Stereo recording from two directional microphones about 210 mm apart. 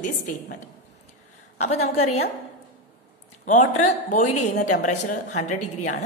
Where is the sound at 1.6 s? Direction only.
30° left (ahead or behind).